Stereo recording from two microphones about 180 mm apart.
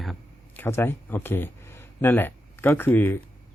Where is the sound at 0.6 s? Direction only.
15° left (ahead or behind).